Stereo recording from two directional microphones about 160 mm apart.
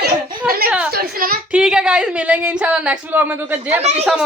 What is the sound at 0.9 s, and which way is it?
Speech, 65° right (ahead or behind).